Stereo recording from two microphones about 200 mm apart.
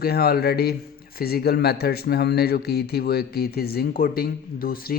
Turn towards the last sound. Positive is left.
turn(degrees=45)  # may be behind; listen again after turning